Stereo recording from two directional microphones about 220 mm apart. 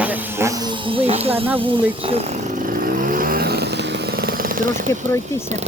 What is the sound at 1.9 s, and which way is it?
Chainsaw, 25° right (ahead or behind).